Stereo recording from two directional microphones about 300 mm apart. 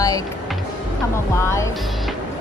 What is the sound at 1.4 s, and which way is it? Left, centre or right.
Speech, centre.